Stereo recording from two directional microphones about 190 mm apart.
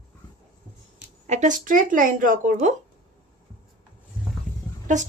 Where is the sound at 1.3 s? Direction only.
40° right (ahead or behind).